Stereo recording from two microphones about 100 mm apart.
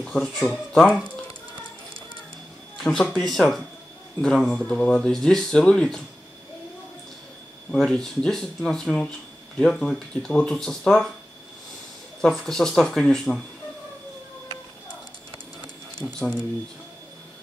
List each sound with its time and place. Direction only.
0.0 s speech: 5° left (ahead or behind)
2.8 s speech: 5° left (ahead or behind)
7.7 s speech: 5° left (ahead or behind)
12.2 s speech: 5° left (ahead or behind)
16.1 s speech: 10° left (ahead or behind)